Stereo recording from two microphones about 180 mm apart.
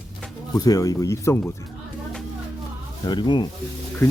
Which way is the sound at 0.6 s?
20° left (ahead or behind).